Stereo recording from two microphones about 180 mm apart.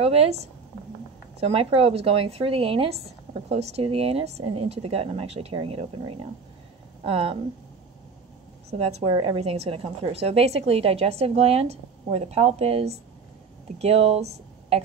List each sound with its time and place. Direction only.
0.0 s speech: 35° right (ahead or behind)
1.4 s speech: 30° right (ahead or behind)
8.6 s speech: 35° right (ahead or behind)